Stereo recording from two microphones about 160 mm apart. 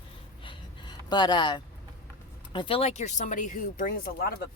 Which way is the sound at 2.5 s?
35° left (ahead or behind).